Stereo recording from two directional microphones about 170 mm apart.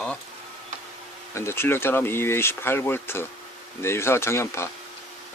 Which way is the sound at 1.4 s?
15° left (ahead or behind).